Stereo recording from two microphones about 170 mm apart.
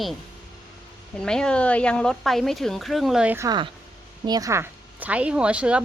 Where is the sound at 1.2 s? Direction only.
5° left (ahead or behind).